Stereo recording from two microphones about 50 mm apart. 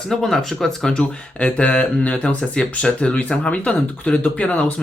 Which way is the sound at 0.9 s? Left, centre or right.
Left.